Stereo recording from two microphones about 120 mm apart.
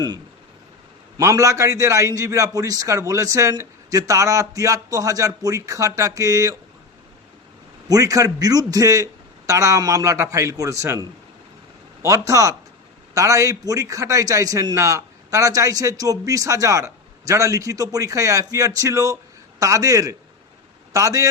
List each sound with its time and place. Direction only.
1.2 s a man's voice: 25° right (ahead or behind)
7.9 s a man's voice: 30° right (ahead or behind)